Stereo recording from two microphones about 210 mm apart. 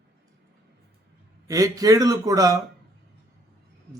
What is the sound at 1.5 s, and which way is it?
Speech, 15° right (ahead or behind).